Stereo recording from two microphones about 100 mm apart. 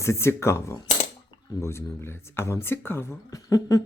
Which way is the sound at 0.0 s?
30° left (ahead or behind).